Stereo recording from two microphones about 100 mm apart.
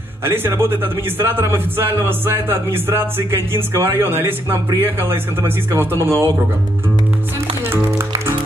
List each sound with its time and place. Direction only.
0.2 s speech: 25° right (ahead or behind)